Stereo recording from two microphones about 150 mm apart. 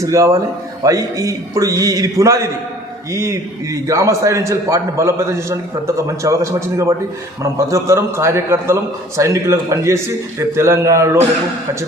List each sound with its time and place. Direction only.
0.0 s a man's voice: 20° right (ahead or behind)